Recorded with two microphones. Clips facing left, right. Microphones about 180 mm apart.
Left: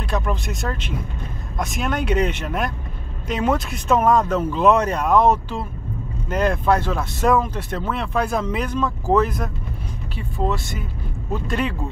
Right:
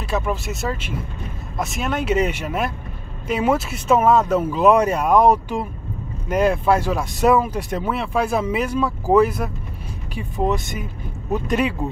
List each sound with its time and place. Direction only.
0.0 s speech: 5° right (ahead or behind)